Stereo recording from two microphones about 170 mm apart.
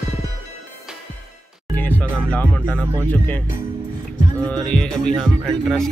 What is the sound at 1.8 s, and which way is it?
Music, 10° left (ahead or behind).